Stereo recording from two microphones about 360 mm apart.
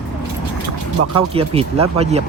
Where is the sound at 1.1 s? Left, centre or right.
Centre.